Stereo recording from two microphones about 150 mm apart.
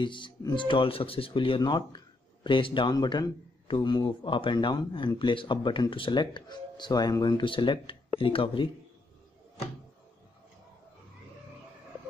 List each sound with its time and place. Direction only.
0.0 s a man's voice: 30° left (ahead or behind)